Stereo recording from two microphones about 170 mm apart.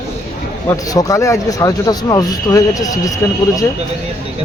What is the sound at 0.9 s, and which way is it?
Speech, 20° left (ahead or behind).